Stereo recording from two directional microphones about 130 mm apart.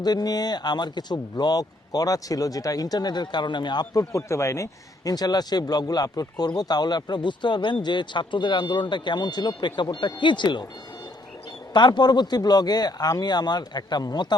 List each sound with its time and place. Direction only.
0.0 s speech: 30° left (ahead or behind)
11.7 s speech: 35° left (ahead or behind)